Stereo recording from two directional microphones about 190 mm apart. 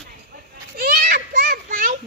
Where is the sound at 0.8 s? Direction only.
50° right (ahead or behind).